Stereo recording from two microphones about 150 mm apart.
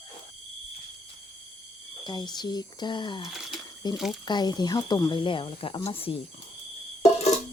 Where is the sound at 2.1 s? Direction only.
30° left (ahead or behind).